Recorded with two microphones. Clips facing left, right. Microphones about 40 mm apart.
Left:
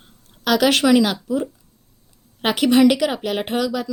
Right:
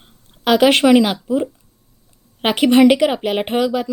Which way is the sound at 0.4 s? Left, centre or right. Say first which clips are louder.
Right 4 dB; right.